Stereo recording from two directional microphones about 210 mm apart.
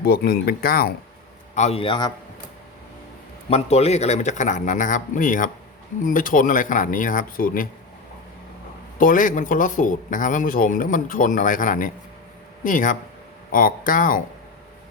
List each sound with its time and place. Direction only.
0.0 s speech: 45° left (ahead or behind)
1.5 s a man's voice: 30° left (ahead or behind)
3.5 s speech: 30° left (ahead or behind)
9.0 s speech: 40° left (ahead or behind)